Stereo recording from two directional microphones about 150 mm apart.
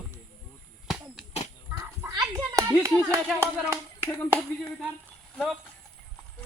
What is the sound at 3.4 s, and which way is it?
Speech, 15° right (ahead or behind).